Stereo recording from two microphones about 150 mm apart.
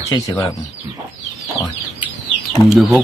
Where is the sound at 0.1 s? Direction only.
30° left (ahead or behind).